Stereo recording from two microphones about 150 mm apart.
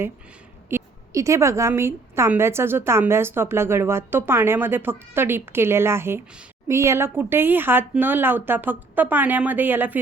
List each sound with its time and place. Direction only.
0.7 s a woman's voice: 20° right (ahead or behind)